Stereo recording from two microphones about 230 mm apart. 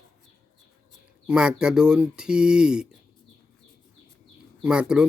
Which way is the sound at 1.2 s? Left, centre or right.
Centre.